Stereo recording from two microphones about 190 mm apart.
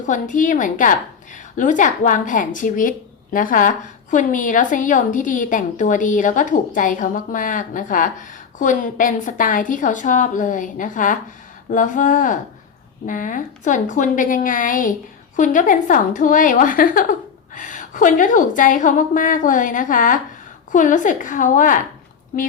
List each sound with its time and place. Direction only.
0.0 s a woman's voice: 40° left (ahead or behind)